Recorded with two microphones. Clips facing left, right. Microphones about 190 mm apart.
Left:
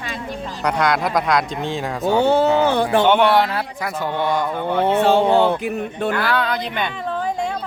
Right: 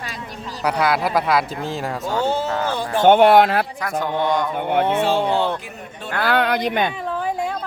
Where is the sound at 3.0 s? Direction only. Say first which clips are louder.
Right 6 dB; 45° right (ahead or behind).